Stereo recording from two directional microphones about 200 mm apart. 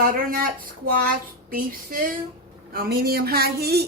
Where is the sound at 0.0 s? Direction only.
45° right (ahead or behind).